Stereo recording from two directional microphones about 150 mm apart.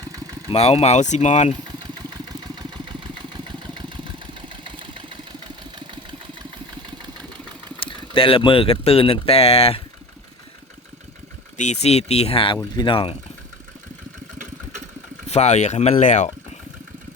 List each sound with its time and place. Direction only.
0.0 s vehicle: 25° right (ahead or behind)
0.5 s speech: 40° left (ahead or behind)
1.8 s vehicle: 30° right (ahead or behind)
7.9 s speech: 35° left (ahead or behind)
11.5 s speech: 50° left (ahead or behind)
15.3 s speech: 50° left (ahead or behind)